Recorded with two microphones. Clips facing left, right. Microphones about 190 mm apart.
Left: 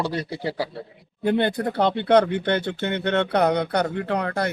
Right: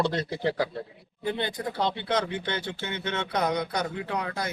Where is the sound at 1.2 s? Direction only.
60° left (ahead or behind).